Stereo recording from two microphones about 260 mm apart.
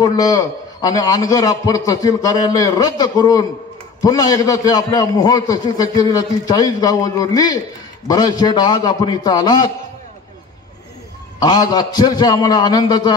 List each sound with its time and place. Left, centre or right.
0.0 s a man's voice: centre
11.3 s a man's voice: centre